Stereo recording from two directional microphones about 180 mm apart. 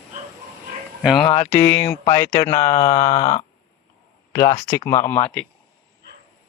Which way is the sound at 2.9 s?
35° left (ahead or behind).